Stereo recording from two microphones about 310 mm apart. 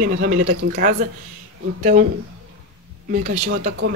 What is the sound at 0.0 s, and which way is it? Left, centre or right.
Speech, right.